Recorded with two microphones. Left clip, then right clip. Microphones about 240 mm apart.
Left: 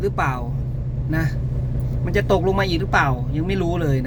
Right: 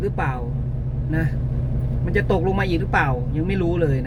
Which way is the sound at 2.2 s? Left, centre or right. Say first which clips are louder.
Left 2 dB; centre.